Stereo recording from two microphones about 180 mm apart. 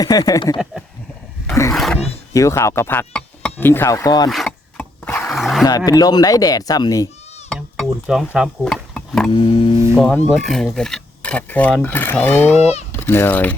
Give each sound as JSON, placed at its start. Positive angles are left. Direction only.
{"t": 0.0, "sound": "speech", "side_deg": 20}
{"t": 1.7, "sound": "roaring cats", "side_deg": 0}
{"t": 2.3, "sound": "speech", "side_deg": 15}
{"t": 4.3, "sound": "a sound", "side_deg": 0}
{"t": 5.6, "sound": "speech", "side_deg": 20}
{"t": 7.5, "sound": "speech", "side_deg": 0}
{"t": 9.3, "sound": "speech", "side_deg": 30}
{"t": 10.0, "sound": "speech", "side_deg": 5}
{"t": 12.5, "sound": "speech", "side_deg": 35}
{"t": 12.9, "sound": "speech", "side_deg": 15}